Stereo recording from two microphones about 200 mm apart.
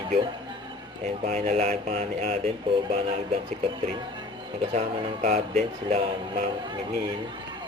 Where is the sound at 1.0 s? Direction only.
30° right (ahead or behind).